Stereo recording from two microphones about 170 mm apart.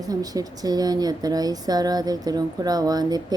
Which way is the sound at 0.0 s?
20° right (ahead or behind).